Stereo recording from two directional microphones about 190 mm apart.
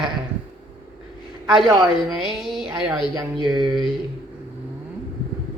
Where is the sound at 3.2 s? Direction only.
25° right (ahead or behind).